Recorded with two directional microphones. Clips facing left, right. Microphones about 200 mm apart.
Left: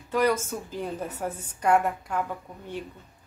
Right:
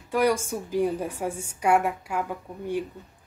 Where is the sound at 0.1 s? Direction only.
10° right (ahead or behind).